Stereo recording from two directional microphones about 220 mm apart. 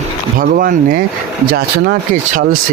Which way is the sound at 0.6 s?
40° right (ahead or behind).